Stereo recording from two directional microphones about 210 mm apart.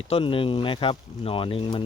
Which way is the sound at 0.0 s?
25° left (ahead or behind).